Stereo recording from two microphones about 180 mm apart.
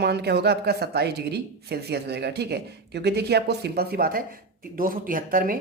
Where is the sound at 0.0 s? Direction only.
65° right (ahead or behind).